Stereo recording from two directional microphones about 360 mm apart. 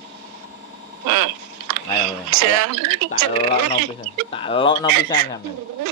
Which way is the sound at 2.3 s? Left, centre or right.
Right.